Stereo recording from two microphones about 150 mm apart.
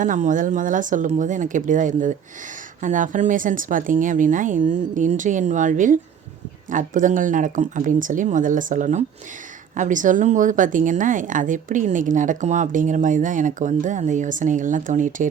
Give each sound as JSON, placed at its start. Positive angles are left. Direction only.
{"t": 0.0, "sound": "a woman's voice", "side_deg": -60}